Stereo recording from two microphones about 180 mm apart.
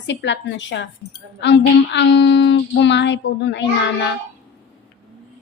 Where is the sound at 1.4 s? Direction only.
75° left (ahead or behind).